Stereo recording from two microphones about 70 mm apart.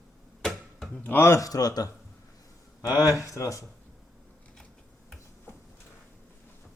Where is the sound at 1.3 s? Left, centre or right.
Left.